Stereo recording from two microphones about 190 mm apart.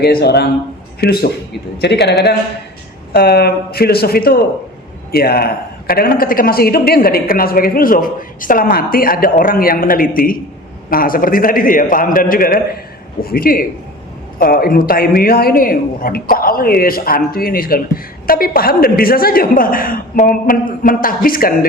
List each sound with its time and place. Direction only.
0.0 s a man's voice: 55° left (ahead or behind)